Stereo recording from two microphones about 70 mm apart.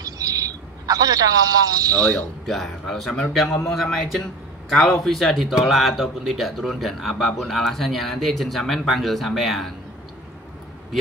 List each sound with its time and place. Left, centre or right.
0.0 s bird: right
2.0 s speech: centre
2.4 s a man's voice: centre